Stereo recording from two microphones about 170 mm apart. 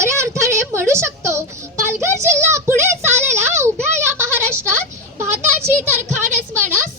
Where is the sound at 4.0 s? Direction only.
15° right (ahead or behind).